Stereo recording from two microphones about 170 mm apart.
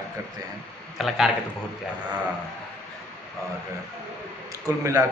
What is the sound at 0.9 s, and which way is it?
Speech, centre (ahead or behind).